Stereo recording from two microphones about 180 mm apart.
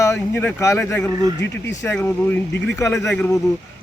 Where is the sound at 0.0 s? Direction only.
15° left (ahead or behind).